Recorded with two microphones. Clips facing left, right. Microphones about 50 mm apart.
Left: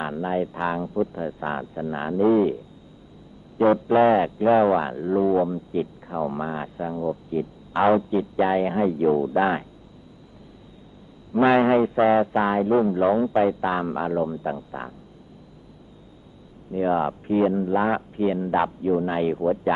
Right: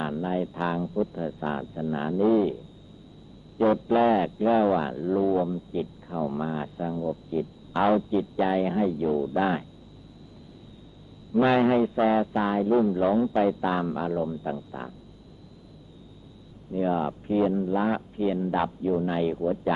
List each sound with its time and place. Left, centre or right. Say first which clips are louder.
0.0 s speech: left 3 dB; left
3.6 s speech: left 4 dB; left
11.3 s speech: left 3 dB; left
16.7 s speech: left 4 dB; left